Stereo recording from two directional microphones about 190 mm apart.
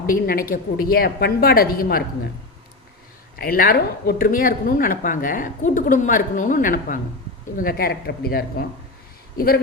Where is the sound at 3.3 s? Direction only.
50° left (ahead or behind).